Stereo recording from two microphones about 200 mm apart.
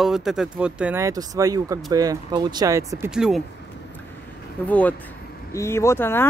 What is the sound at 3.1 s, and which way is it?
Speech, 5° right (ahead or behind).